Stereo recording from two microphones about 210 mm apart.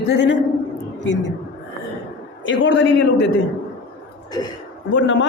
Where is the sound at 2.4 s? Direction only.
60° left (ahead or behind).